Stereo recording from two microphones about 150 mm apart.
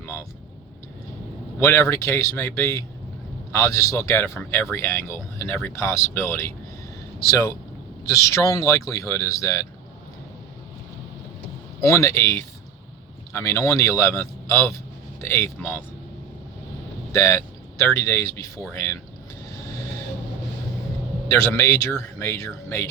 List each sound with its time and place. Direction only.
1.5 s speech: 15° left (ahead or behind)
11.8 s speech: 20° left (ahead or behind)
17.1 s speech: 20° left (ahead or behind)
21.2 s speech: 20° left (ahead or behind)